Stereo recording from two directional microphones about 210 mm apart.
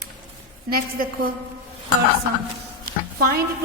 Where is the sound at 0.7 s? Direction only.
45° right (ahead or behind).